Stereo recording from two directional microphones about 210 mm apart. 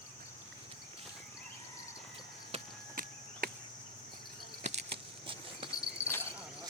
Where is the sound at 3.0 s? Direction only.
40° right (ahead or behind).